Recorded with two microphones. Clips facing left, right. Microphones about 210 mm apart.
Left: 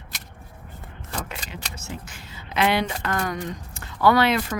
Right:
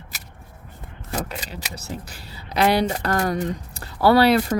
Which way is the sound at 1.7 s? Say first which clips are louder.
Right 3 dB; 35° right (ahead or behind).